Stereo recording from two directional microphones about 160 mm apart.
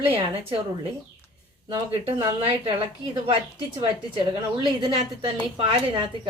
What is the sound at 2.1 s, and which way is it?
Speech, 20° right (ahead or behind).